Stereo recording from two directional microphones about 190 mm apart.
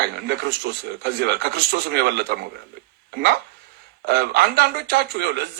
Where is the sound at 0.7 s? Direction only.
60° right (ahead or behind).